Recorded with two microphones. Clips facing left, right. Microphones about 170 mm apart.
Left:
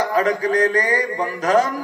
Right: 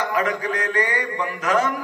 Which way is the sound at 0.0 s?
35° left (ahead or behind).